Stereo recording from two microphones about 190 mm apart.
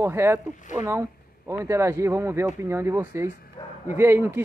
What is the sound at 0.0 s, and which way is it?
Speech, 15° right (ahead or behind).